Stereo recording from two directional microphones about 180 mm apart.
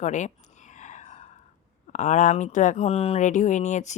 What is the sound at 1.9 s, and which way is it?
Speech, 40° left (ahead or behind).